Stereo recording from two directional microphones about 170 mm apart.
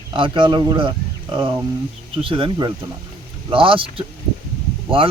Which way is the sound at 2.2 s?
30° right (ahead or behind).